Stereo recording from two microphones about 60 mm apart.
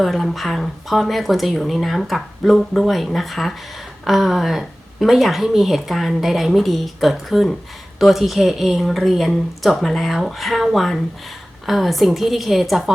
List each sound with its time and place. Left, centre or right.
0.0 s a woman's voice: centre